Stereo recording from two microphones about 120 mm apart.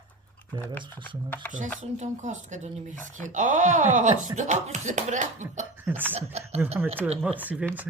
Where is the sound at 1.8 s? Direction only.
75° right (ahead or behind).